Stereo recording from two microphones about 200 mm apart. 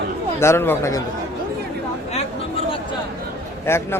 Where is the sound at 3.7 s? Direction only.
10° left (ahead or behind).